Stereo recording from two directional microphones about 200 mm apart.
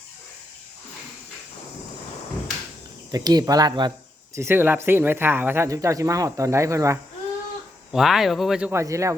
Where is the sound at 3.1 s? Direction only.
20° right (ahead or behind).